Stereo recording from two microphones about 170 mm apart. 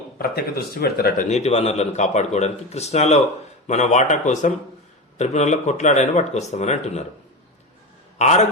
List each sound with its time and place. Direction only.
0.2 s a man's voice: 60° left (ahead or behind); by 7.0 s 40° left (ahead or behind)
8.2 s a man's voice: 40° left (ahead or behind)